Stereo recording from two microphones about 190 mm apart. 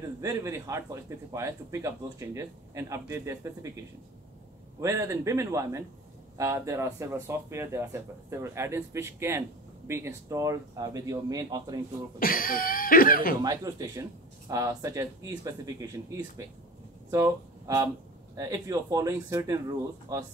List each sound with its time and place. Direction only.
0.2 s speech: 15° right (ahead or behind)
12.2 s speech: 50° left (ahead or behind)
13.4 s speech: 20° right (ahead or behind)